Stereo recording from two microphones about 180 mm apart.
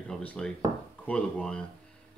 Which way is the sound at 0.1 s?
5° left (ahead or behind).